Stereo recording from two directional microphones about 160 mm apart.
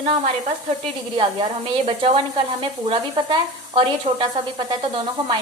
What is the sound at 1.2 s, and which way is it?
Speech, 35° right (ahead or behind).